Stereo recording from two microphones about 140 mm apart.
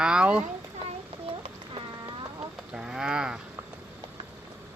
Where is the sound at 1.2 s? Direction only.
35° right (ahead or behind).